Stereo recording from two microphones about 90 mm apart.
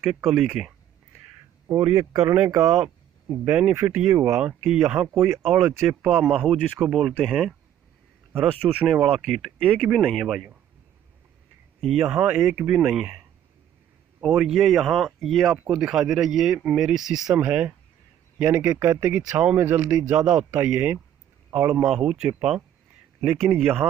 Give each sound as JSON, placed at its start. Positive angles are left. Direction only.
{"t": 0.0, "sound": "speech", "side_deg": -5}
{"t": 2.0, "sound": "speech", "side_deg": -40}
{"t": 2.7, "sound": "speech", "side_deg": -5}
{"t": 6.5, "sound": "speech", "side_deg": 5}
{"t": 8.8, "sound": "speech", "side_deg": 0}
{"t": 11.8, "sound": "speech", "side_deg": -5}
{"t": 14.2, "sound": "speech", "side_deg": -5}
{"t": 15.5, "sound": "speech", "side_deg": -10}
{"t": 17.4, "sound": "speech", "side_deg": -15}
{"t": 20.2, "sound": "speech", "side_deg": -10}
{"t": 21.5, "sound": "speech", "side_deg": -25}
{"t": 21.8, "sound": "speech", "side_deg": -5}
{"t": 23.3, "sound": "speech", "side_deg": 0}